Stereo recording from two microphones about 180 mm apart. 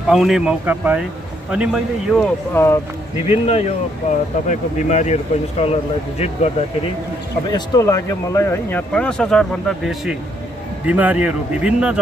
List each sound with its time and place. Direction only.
0.1 s speech: centre (ahead or behind)
2.5 s speech: 15° left (ahead or behind)
3.3 s speech: 35° left (ahead or behind)
7.4 s speech: 20° left (ahead or behind); by 12.0 s 5° right (ahead or behind)